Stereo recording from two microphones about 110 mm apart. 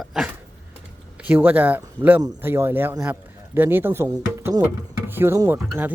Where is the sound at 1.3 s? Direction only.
20° right (ahead or behind).